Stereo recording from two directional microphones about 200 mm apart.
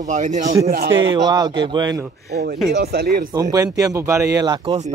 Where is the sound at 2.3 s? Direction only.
55° right (ahead or behind).